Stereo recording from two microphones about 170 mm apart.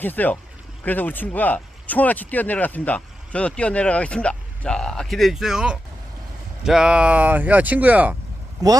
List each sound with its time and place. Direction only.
0.0 s speech: 10° left (ahead or behind); by 8.1 s 10° right (ahead or behind)